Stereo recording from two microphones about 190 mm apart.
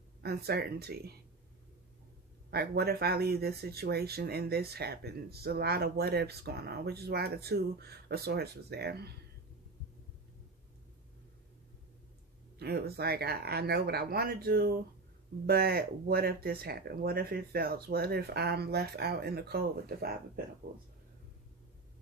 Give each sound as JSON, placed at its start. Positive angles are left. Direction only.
{"t": 0.2, "sound": "speech", "side_deg": -55}
{"t": 2.5, "sound": "speech", "side_deg": -55}
{"t": 12.5, "sound": "speech", "side_deg": -55}